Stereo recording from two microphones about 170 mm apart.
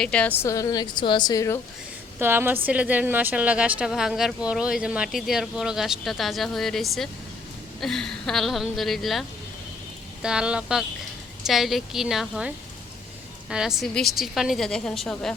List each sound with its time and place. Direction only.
0.0 s a woman's voice: 5° left (ahead or behind)
2.1 s a woman's voice: 15° right (ahead or behind)
10.2 s a woman's voice: 5° right (ahead or behind)